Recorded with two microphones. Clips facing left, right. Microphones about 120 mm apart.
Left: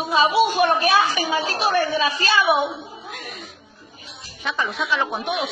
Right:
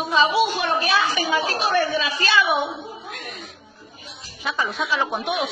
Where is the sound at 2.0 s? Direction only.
40° left (ahead or behind).